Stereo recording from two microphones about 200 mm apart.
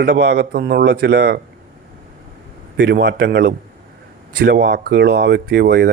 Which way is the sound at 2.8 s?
60° right (ahead or behind).